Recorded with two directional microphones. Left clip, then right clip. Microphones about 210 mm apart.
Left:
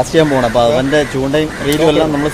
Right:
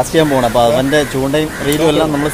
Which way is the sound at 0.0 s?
5° right (ahead or behind).